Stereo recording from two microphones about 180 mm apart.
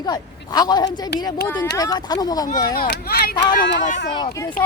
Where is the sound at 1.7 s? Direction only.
20° left (ahead or behind).